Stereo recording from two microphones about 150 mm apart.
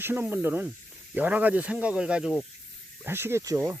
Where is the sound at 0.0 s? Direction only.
15° right (ahead or behind).